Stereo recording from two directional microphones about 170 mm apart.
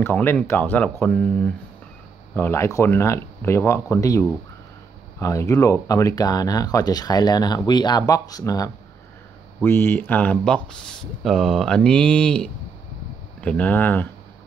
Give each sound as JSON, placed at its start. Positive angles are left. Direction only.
{"t": 0.0, "sound": "speech", "side_deg": 10}